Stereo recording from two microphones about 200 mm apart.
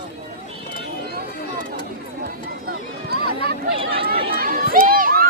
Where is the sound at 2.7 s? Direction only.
50° right (ahead or behind).